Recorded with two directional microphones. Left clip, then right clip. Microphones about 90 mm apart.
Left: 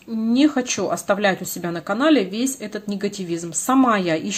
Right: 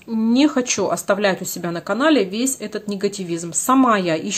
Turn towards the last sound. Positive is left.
turn(degrees=-20)  # may be behind; listen again after turning